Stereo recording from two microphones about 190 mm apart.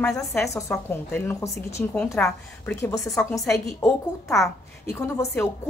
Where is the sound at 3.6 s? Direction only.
15° left (ahead or behind).